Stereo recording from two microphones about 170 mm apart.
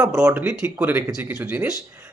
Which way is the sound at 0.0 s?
20° right (ahead or behind).